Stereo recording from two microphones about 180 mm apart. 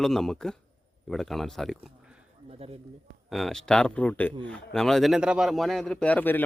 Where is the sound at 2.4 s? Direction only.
35° right (ahead or behind).